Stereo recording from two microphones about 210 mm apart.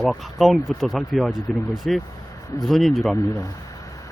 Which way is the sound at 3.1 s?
15° left (ahead or behind).